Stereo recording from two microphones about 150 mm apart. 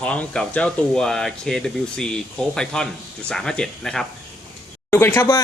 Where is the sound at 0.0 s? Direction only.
5° left (ahead or behind).